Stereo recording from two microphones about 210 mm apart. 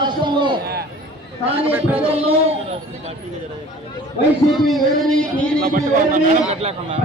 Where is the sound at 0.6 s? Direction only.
50° right (ahead or behind).